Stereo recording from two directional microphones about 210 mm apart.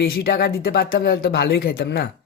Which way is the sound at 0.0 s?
50° left (ahead or behind).